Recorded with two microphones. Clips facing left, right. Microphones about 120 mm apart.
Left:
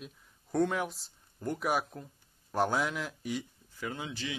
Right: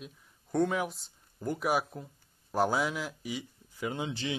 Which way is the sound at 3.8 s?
20° right (ahead or behind).